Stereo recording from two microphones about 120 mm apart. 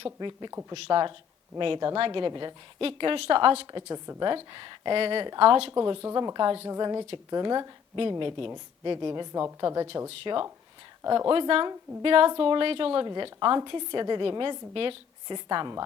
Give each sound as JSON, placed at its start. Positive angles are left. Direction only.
{"t": 0.0, "sound": "a woman's voice", "side_deg": -40}
{"t": 2.8, "sound": "speech", "side_deg": -50}
{"t": 3.7, "sound": "a woman's voice", "side_deg": -30}
{"t": 4.5, "sound": "speech", "side_deg": -45}
{"t": 5.7, "sound": "a woman's voice", "side_deg": -30}
{"t": 11.3, "sound": "a woman's voice", "side_deg": -45}